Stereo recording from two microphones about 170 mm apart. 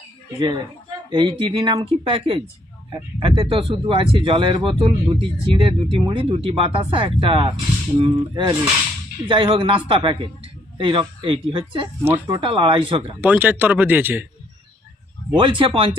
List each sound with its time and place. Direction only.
0.3 s speech: 30° right (ahead or behind)
13.2 s speech: 10° right (ahead or behind)
15.4 s speech: 30° right (ahead or behind)